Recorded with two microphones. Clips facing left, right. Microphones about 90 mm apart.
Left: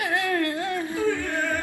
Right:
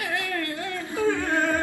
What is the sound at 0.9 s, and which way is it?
Singing, 20° right (ahead or behind).